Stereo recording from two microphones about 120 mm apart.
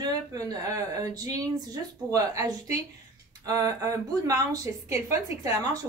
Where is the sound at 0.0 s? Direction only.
30° right (ahead or behind).